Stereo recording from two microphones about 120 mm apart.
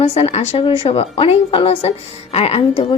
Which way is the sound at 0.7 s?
50° left (ahead or behind).